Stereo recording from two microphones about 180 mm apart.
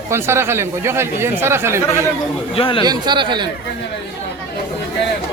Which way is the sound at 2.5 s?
30° left (ahead or behind).